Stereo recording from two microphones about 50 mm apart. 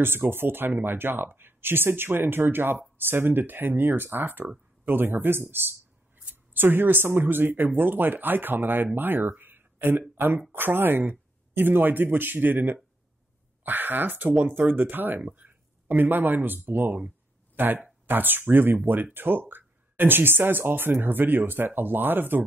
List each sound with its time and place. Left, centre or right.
0.0 s speech: right